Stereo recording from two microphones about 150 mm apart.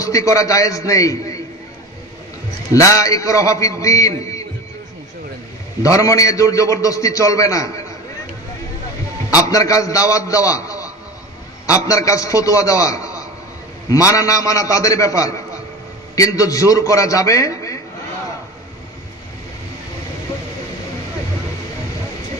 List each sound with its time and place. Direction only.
0.0 s a man's voice: 20° left (ahead or behind)
2.7 s a man's voice: 20° left (ahead or behind)
5.8 s a man's voice: 20° left (ahead or behind)
9.5 s a man's voice: 20° left (ahead or behind)